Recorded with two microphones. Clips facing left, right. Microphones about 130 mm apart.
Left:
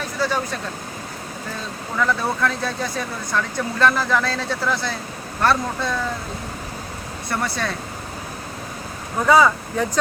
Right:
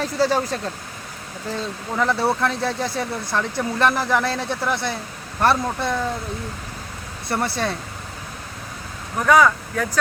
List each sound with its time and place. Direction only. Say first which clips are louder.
0.0 s speech: right 3 dB; 35° right (ahead or behind)
2.0 s speech: right 1 dB; 25° right (ahead or behind)
7.3 s speech: right 2 dB; 25° right (ahead or behind)
9.1 s speech: even; 15° left (ahead or behind)